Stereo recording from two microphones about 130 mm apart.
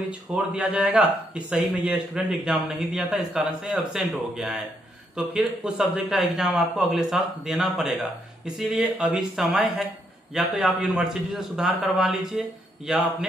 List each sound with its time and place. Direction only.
0.3 s a man's voice: 5° right (ahead or behind)